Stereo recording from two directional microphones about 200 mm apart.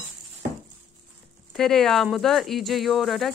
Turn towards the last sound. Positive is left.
turn(degrees=0)  # may be behind; listen again after turning